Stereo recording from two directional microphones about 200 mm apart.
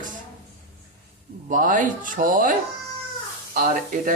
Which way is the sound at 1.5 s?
40° right (ahead or behind).